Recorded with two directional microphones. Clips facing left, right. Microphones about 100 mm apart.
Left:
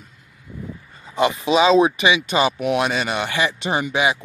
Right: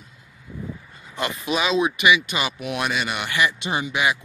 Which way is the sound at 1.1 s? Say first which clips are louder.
Left 8 dB; 25° left (ahead or behind).